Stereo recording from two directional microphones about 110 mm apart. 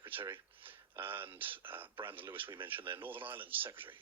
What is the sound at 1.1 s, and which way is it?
Speech, 20° right (ahead or behind).